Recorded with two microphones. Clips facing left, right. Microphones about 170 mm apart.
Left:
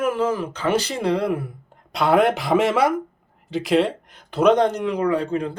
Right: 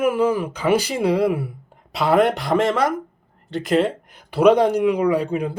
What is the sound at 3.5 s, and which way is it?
Speech, centre (ahead or behind).